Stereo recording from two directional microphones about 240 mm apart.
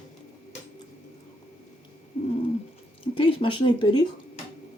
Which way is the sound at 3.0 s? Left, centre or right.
Left.